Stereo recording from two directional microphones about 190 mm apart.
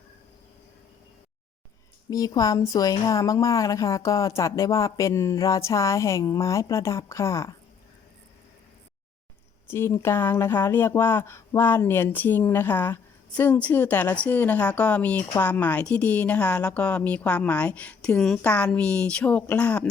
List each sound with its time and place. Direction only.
2.0 s speech: 20° left (ahead or behind)
9.6 s speech: 15° left (ahead or behind)